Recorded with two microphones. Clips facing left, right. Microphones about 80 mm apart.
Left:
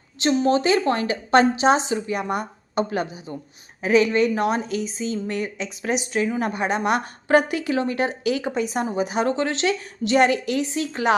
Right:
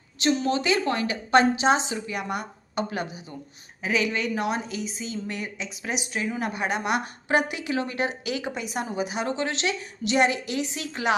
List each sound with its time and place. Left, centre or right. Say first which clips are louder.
0.2 s speech: left 5 dB; left
3.8 s speech: left 8 dB; left